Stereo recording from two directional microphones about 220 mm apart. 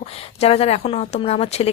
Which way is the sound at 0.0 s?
25° left (ahead or behind).